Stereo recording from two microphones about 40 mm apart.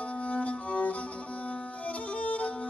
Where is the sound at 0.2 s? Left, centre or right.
Left.